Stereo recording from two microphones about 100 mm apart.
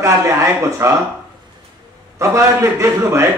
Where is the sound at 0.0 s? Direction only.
30° right (ahead or behind).